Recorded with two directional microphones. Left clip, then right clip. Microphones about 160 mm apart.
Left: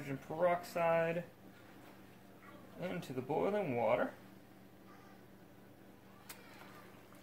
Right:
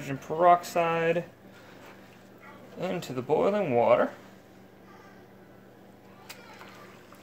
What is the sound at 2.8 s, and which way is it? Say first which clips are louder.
Speech: right 10 dB; 55° right (ahead or behind).